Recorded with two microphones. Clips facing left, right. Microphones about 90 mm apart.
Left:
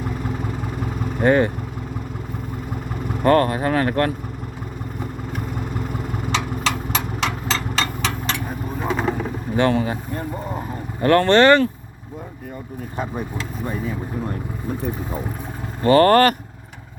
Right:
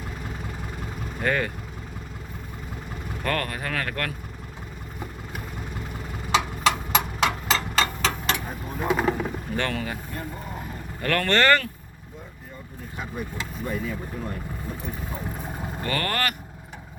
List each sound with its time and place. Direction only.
1.2 s speech: 25° left (ahead or behind)
3.2 s speech: 25° left (ahead or behind)
6.3 s a sound: 10° right (ahead or behind)
8.4 s vehicle: centre (ahead or behind)
9.6 s speech: 20° left (ahead or behind)
13.3 s speech: 25° left (ahead or behind)
15.8 s speech: 35° left (ahead or behind)